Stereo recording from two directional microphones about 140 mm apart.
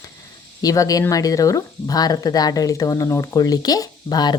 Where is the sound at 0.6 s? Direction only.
25° left (ahead or behind).